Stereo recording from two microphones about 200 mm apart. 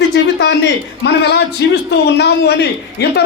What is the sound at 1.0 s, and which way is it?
A woman's voice, 55° left (ahead or behind).